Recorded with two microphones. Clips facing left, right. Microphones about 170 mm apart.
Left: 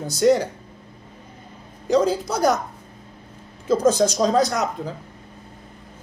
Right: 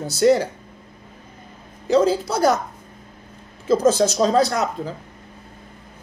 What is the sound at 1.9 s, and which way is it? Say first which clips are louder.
Speech: right 2 dB; 5° right (ahead or behind).